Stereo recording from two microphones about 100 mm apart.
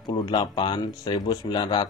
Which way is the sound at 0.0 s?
45° left (ahead or behind).